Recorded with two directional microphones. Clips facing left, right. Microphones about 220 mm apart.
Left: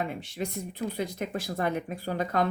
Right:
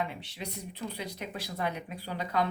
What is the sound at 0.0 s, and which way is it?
Speech, 45° left (ahead or behind).